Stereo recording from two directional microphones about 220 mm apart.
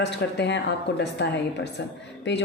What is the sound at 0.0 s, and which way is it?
Speech, 50° left (ahead or behind).